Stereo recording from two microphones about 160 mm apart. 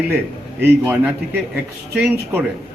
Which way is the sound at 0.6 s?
10° right (ahead or behind).